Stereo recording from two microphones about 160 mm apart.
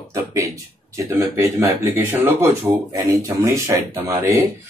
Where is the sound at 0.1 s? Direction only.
20° right (ahead or behind).